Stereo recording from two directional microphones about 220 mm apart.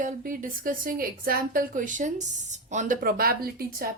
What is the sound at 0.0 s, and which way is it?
A woman's voice, 35° right (ahead or behind).